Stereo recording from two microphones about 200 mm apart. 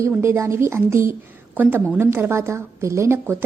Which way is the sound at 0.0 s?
15° right (ahead or behind).